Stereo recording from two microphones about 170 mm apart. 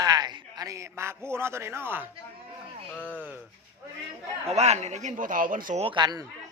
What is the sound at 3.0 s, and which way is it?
Speech, 5° left (ahead or behind).